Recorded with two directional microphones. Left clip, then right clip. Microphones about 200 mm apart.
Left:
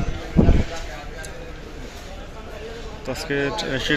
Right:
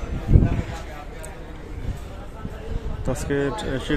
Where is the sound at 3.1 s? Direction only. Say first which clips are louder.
Even; 20° right (ahead or behind).